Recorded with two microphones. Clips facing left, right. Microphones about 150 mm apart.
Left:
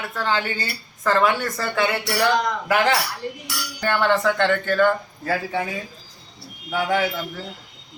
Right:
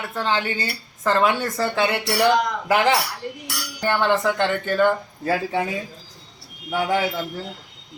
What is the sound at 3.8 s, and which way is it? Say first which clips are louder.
Speech: even; 15° right (ahead or behind).